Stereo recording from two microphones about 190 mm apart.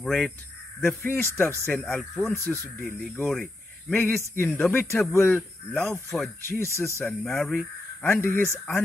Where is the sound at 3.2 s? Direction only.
5° left (ahead or behind).